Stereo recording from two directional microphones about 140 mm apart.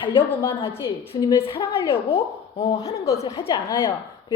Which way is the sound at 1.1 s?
25° left (ahead or behind).